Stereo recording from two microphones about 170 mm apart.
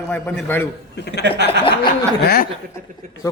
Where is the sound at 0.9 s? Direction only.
75° left (ahead or behind).